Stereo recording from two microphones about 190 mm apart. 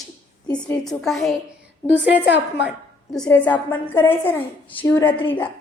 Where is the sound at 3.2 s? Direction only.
10° left (ahead or behind).